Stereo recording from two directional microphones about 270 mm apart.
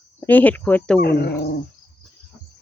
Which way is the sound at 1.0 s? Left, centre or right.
Left.